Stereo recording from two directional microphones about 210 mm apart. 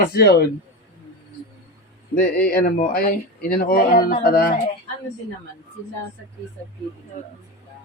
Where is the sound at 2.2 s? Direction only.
45° left (ahead or behind).